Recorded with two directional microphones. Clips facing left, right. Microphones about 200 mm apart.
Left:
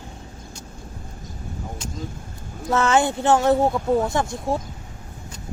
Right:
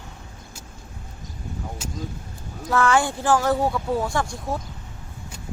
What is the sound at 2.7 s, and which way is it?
Speech, 20° left (ahead or behind).